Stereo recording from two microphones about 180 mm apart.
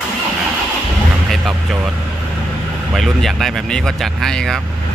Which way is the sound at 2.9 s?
Centre (ahead or behind).